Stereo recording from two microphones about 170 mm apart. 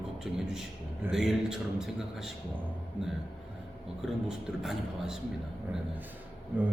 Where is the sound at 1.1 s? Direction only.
Centre (ahead or behind).